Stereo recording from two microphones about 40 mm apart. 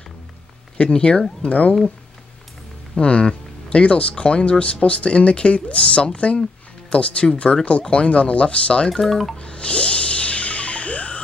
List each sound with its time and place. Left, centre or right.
0.7 s speech: left
1.4 s speech: left
3.0 s speech: left
8.8 s speech: centre
9.4 s music: left